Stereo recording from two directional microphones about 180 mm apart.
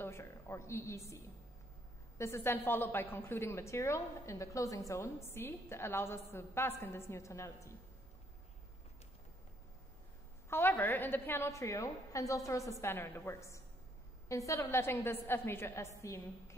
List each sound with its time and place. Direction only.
0.0 s a woman's voice: 15° left (ahead or behind)
10.5 s a woman's voice: 10° left (ahead or behind)